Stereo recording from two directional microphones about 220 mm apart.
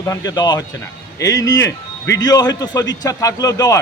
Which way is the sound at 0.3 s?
20° left (ahead or behind).